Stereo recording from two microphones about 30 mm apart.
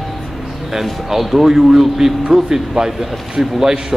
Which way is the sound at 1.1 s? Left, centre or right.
Centre.